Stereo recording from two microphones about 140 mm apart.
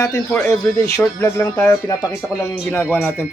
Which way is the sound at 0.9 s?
20° left (ahead or behind).